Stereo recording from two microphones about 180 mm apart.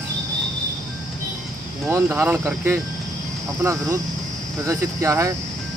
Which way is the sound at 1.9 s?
10° right (ahead or behind).